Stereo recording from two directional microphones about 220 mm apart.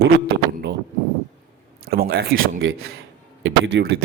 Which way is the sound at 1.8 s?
45° right (ahead or behind).